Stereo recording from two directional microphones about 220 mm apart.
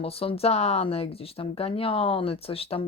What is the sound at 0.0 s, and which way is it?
Speech, 25° left (ahead or behind).